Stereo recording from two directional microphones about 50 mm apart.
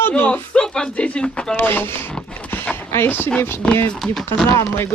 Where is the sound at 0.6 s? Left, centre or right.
Centre.